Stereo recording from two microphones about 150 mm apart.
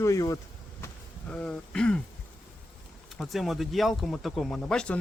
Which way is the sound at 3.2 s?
Centre (ahead or behind).